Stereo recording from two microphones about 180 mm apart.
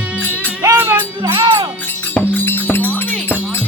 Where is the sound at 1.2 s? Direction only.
25° right (ahead or behind).